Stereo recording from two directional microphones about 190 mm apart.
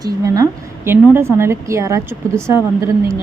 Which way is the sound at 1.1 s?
15° right (ahead or behind).